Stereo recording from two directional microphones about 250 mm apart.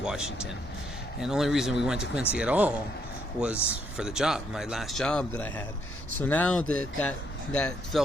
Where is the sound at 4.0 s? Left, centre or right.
Centre.